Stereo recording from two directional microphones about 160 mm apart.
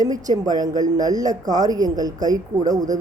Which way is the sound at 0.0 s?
25° right (ahead or behind).